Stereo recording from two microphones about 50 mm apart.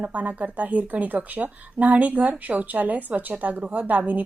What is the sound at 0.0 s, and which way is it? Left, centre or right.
Speech, right.